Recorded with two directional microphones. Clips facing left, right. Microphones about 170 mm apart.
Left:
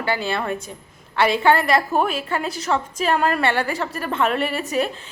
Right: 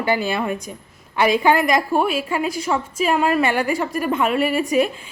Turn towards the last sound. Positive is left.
turn(degrees=-10)  # may be behind; listen again after turning